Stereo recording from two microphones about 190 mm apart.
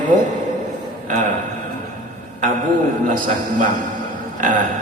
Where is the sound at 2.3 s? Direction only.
45° right (ahead or behind).